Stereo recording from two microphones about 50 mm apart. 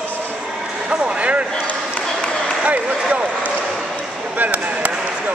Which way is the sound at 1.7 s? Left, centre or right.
Left.